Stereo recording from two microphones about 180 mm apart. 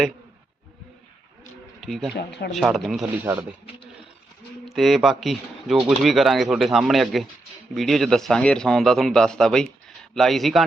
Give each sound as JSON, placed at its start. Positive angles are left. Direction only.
{"t": 1.8, "sound": "speech", "side_deg": 0}
{"t": 2.1, "sound": "speech", "side_deg": 70}
{"t": 2.5, "sound": "speech", "side_deg": 0}
{"t": 4.7, "sound": "speech", "side_deg": 0}